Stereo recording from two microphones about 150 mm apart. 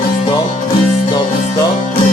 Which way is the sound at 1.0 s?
30° left (ahead or behind).